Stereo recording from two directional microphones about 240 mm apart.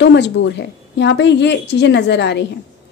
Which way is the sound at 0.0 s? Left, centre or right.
Left.